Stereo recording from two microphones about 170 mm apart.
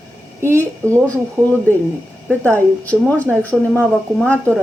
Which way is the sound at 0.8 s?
15° right (ahead or behind).